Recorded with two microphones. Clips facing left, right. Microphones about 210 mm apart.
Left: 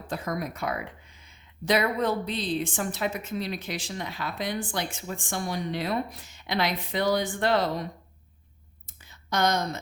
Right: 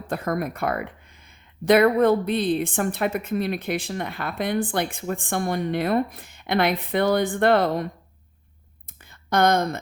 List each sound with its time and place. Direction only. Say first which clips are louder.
0.1 s a woman's voice: right 5 dB; 55° right (ahead or behind)
9.0 s speech: right 6 dB; 55° right (ahead or behind)